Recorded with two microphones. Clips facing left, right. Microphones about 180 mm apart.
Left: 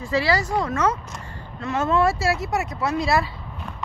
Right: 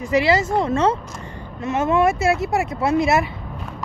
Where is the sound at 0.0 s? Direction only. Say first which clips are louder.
Right 4 dB; 20° right (ahead or behind).